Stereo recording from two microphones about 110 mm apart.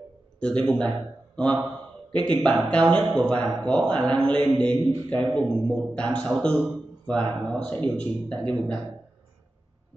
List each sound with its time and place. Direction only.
0.4 s a man's voice: 10° left (ahead or behind)